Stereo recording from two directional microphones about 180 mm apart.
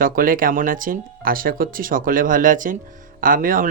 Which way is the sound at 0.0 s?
50° right (ahead or behind).